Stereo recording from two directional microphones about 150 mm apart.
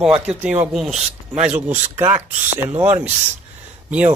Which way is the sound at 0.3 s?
10° right (ahead or behind).